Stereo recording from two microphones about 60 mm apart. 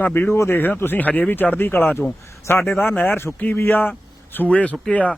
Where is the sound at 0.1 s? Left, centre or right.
Left.